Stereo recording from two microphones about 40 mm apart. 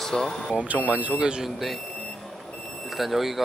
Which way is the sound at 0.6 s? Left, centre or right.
Right.